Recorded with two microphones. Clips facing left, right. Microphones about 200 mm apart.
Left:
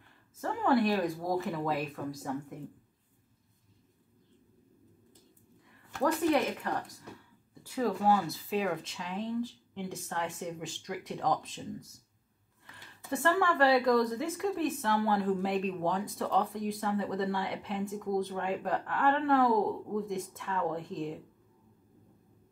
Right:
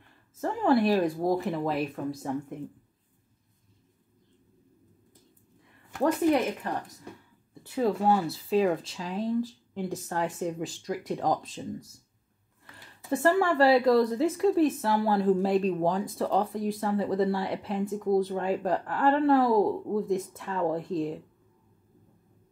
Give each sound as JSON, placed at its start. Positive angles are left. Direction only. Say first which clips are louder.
{"t": 0.4, "sound": "speech", "louder": "right 4 dB", "side_deg": -30}
{"t": 7.6, "sound": "speech", "louder": "right 3 dB", "side_deg": -25}
{"t": 13.1, "sound": "speech", "louder": "right 5 dB", "side_deg": -35}